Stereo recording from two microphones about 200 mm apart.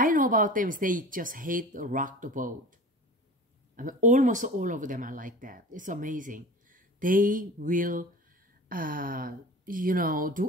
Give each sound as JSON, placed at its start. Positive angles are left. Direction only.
{"t": 0.0, "sound": "speech", "side_deg": -40}
{"t": 3.7, "sound": "speech", "side_deg": -40}